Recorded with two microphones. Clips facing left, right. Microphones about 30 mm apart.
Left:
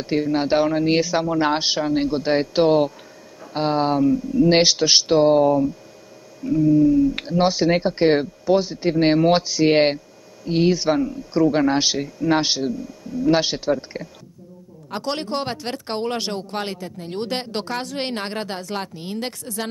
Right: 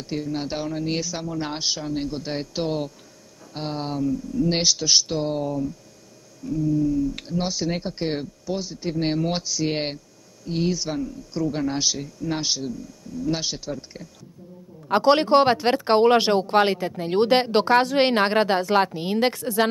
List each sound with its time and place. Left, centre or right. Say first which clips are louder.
0.0 s speech: left 7 dB; left
4.5 s speech: left 5 dB; left
6.4 s speech: left 7 dB; centre
14.9 s speech: right 9 dB; right